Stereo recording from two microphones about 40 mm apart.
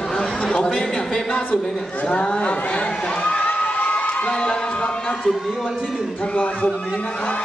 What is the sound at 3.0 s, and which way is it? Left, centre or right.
Crowd, left.